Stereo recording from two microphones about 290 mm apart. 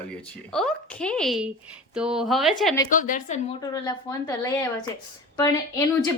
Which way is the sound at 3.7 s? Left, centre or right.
Centre.